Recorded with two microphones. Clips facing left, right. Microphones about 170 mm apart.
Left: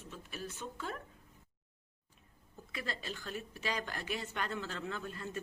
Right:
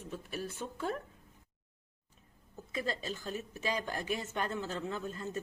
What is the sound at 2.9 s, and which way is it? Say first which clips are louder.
Speech: right 3 dB; 45° right (ahead or behind).